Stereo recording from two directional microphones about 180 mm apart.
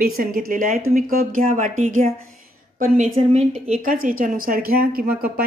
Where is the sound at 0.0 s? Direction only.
50° right (ahead or behind).